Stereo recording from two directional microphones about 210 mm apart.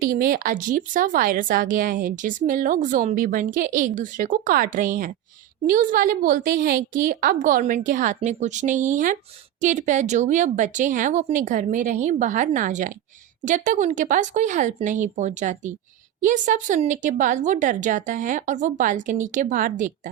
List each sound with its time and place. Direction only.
0.1 s speech: 40° right (ahead or behind)